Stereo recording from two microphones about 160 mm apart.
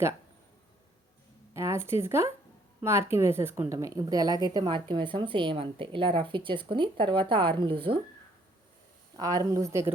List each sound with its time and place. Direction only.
1.5 s a woman's voice: 15° right (ahead or behind); by 7.9 s 30° right (ahead or behind)
9.1 s a woman's voice: 20° right (ahead or behind)